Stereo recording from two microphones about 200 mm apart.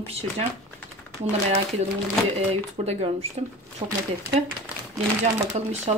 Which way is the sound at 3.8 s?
20° right (ahead or behind).